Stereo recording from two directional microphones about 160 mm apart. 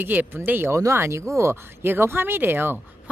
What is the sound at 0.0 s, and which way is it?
Speech, 10° right (ahead or behind).